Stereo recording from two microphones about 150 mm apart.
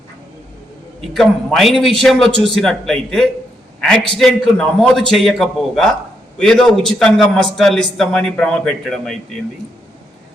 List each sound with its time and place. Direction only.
1.1 s a man's voice: centre (ahead or behind)